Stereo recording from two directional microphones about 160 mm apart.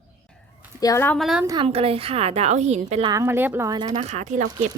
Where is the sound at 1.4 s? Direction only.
25° right (ahead or behind).